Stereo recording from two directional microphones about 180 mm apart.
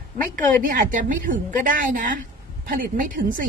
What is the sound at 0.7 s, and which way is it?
A woman's voice, 50° right (ahead or behind).